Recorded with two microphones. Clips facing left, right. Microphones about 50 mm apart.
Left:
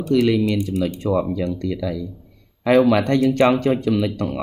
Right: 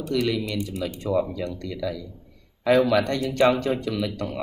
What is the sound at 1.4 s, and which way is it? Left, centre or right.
Speech, left.